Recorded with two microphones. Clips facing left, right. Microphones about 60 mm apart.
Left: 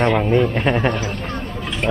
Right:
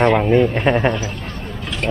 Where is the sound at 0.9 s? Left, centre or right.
Left.